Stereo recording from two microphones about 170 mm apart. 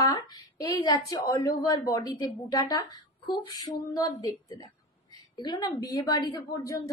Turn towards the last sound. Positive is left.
turn(degrees=20)  # may be behind; listen again after turning